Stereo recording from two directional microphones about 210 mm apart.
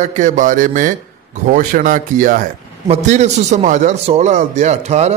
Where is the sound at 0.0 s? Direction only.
35° right (ahead or behind).